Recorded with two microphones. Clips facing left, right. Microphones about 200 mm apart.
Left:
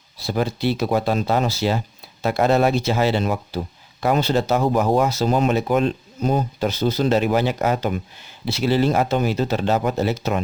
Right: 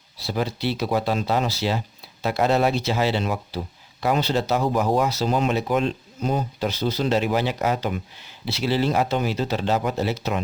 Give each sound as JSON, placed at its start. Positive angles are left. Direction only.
{"t": 0.2, "sound": "speech", "side_deg": 50}